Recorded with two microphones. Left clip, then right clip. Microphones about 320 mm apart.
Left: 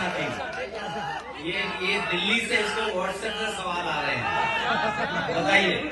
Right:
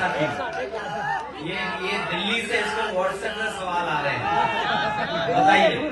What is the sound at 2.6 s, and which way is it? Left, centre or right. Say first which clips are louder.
A man's voice: right 2 dB; right.